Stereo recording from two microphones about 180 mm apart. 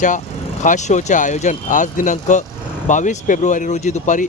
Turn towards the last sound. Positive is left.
turn(degrees=45)  # may be behind; listen again after turning